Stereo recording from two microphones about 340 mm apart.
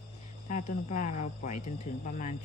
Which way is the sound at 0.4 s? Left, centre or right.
Left.